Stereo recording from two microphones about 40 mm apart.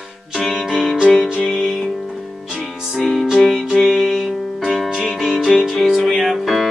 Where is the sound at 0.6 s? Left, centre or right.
Centre.